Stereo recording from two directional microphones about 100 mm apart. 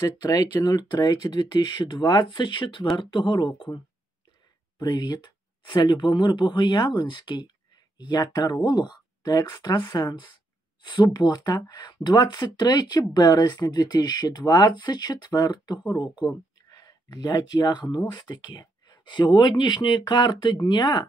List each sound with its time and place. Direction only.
0.2 s speech: 40° left (ahead or behind)